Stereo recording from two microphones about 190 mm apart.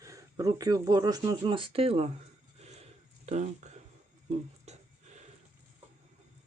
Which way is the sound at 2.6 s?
35° right (ahead or behind).